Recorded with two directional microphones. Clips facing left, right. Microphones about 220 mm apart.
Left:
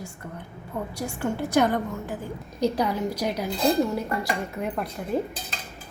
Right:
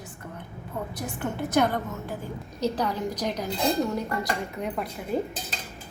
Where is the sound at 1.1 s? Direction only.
10° left (ahead or behind).